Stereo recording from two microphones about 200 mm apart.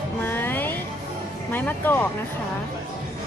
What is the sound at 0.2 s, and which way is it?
Music, 10° left (ahead or behind).